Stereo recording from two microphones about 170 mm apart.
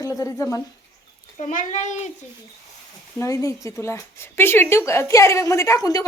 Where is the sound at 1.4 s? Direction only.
45° left (ahead or behind).